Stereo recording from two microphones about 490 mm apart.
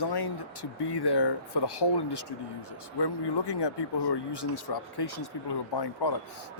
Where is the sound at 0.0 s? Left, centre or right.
Left.